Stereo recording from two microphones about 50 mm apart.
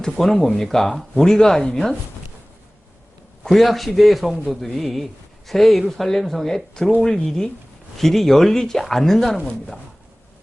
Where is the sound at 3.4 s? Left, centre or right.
Centre.